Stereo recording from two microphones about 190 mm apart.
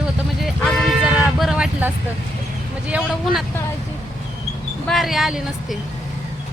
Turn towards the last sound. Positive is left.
turn(degrees=0)  # may be behind; listen again after turning